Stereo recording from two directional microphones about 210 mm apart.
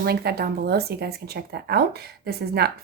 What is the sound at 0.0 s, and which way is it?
A woman's voice, 50° right (ahead or behind).